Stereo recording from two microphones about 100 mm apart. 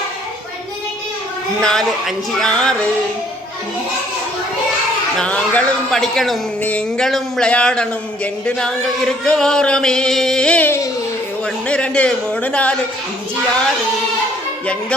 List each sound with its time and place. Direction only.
1.6 s music: 5° left (ahead or behind)
5.1 s a man's voice: 10° left (ahead or behind)
6.0 s music: centre (ahead or behind)
6.6 s a man's voice: 15° left (ahead or behind)
11.7 s a man's voice: 10° left (ahead or behind)